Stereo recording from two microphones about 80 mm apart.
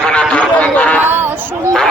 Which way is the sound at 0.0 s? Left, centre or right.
Centre.